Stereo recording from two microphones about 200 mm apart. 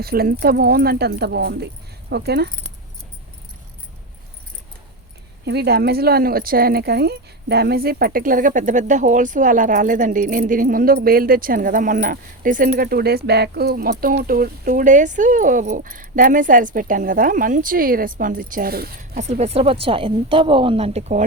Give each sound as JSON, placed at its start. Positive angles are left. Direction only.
{"t": 0.0, "sound": "speech", "side_deg": -50}
{"t": 5.5, "sound": "speech", "side_deg": -55}